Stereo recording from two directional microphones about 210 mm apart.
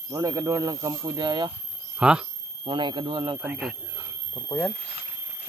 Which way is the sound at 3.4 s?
5° right (ahead or behind).